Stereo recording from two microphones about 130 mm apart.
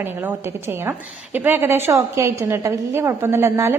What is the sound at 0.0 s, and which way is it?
A woman's voice, 15° right (ahead or behind).